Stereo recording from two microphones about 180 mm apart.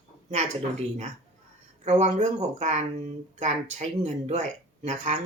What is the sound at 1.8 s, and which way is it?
Speech, 40° right (ahead or behind).